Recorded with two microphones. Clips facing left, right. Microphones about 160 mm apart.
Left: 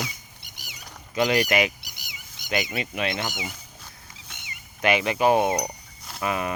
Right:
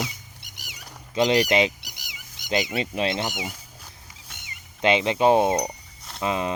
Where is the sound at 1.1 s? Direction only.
25° right (ahead or behind).